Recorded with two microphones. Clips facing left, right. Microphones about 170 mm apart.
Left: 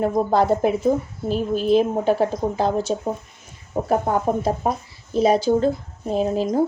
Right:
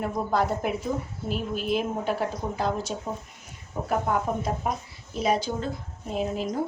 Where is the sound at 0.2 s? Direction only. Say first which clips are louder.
Left 7 dB; 35° left (ahead or behind).